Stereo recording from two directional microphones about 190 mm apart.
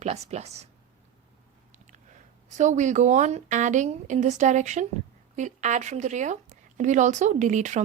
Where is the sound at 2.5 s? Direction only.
40° right (ahead or behind).